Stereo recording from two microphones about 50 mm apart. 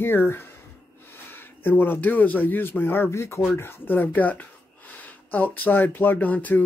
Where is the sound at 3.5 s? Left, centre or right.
Left.